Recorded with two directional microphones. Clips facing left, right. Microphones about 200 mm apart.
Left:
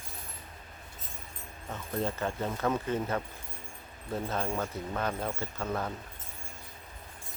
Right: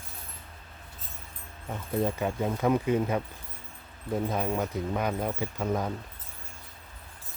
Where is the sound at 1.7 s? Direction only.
15° right (ahead or behind).